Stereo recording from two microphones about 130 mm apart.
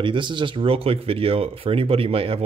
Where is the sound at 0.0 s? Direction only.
40° right (ahead or behind).